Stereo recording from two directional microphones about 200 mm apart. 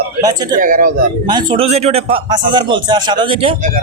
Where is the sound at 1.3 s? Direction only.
25° right (ahead or behind).